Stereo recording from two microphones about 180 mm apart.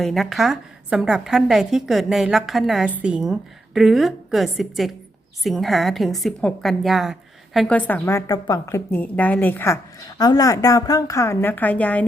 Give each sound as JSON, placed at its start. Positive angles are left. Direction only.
{"t": 0.0, "sound": "a woman's voice", "side_deg": 0}